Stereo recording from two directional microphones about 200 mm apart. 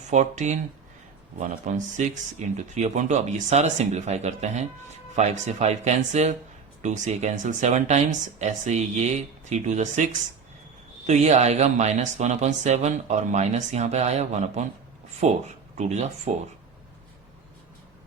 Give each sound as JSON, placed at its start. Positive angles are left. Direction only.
{"t": 0.1, "sound": "speech", "side_deg": -35}